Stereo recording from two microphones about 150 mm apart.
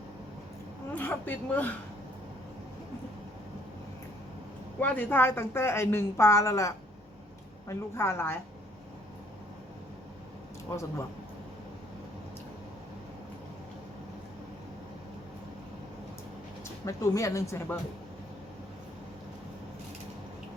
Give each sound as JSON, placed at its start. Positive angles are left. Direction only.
{"t": 0.9, "sound": "a woman's voice", "side_deg": 10}
{"t": 4.8, "sound": "a woman's voice", "side_deg": 15}
{"t": 16.8, "sound": "speech", "side_deg": 20}